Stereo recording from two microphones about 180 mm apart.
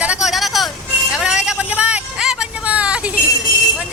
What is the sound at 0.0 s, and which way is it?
Vehicle, 5° right (ahead or behind).